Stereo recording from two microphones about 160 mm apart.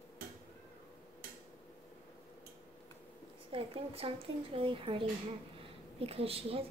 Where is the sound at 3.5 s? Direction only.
35° right (ahead or behind).